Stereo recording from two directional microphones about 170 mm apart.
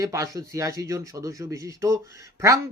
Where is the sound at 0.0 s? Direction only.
20° right (ahead or behind).